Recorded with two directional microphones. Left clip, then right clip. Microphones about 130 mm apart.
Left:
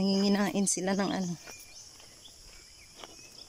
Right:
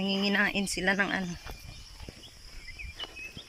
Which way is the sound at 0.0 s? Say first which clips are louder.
Right 2 dB; 35° left (ahead or behind).